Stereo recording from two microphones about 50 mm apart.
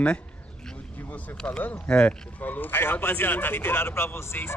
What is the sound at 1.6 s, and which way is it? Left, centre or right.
Speech, left.